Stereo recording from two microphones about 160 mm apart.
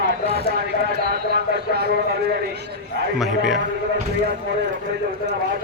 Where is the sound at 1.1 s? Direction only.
80° right.